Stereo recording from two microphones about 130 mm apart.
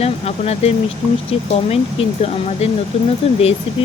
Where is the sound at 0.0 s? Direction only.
50° left (ahead or behind).